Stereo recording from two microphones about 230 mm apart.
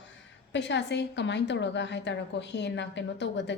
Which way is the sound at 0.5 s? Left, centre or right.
Left.